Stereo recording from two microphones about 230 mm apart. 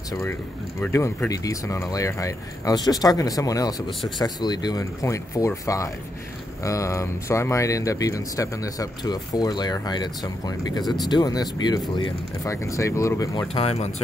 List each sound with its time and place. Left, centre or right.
0.7 s speech: centre